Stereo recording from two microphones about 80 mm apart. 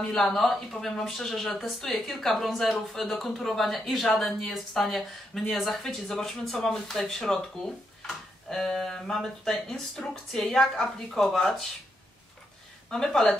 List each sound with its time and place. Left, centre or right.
0.0 s speech: centre
12.9 s speech: centre